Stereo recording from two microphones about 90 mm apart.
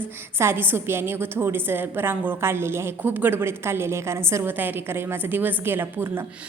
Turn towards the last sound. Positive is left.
turn(degrees=-25)  # may be behind; listen again after turning